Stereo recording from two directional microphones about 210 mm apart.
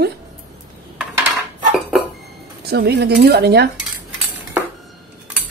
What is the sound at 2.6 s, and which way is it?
Speech, 50° right (ahead or behind).